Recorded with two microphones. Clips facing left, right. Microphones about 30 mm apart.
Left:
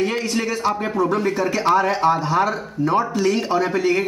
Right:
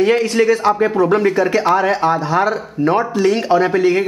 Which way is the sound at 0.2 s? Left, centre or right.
Right.